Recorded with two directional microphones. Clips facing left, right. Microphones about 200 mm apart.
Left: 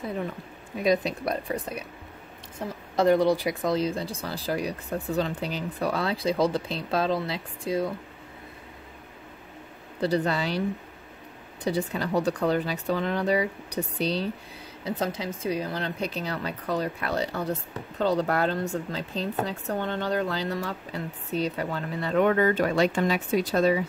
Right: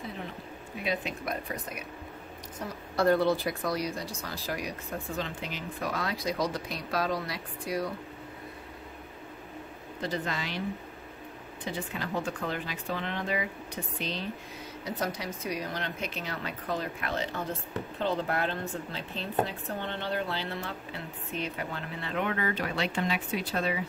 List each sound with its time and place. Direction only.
0.8 s a woman's voice: 35° left (ahead or behind)
3.0 s speech: 15° left (ahead or behind)
9.9 s a woman's voice: 35° left (ahead or behind)
11.6 s a woman's voice: 35° left (ahead or behind)
14.9 s a woman's voice: 25° left (ahead or behind)